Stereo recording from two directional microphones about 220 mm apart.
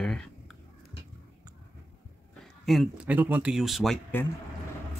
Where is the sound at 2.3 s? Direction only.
Centre (ahead or behind).